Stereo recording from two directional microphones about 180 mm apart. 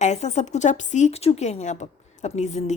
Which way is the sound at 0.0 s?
40° left (ahead or behind).